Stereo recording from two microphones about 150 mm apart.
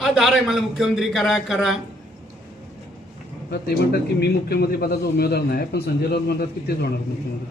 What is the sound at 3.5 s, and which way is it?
A man's voice, 90° left.